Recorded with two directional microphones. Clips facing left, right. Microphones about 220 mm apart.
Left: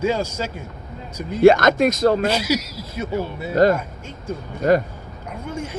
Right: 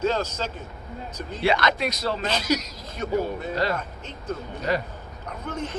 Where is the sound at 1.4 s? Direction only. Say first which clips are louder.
Left 11 dB; 45° left (ahead or behind).